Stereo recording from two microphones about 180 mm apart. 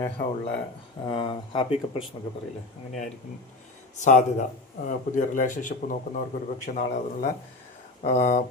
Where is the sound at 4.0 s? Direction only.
45° left (ahead or behind).